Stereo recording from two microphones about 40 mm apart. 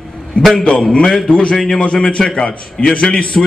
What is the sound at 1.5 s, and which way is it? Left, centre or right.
A man's voice, centre.